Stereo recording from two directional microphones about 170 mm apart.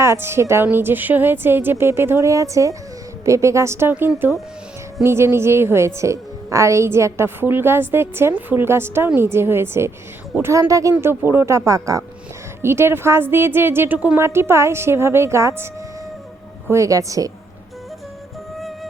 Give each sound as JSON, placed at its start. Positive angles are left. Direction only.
{"t": 0.0, "sound": "a woman's voice", "side_deg": -15}
{"t": 18.5, "sound": "music", "side_deg": 0}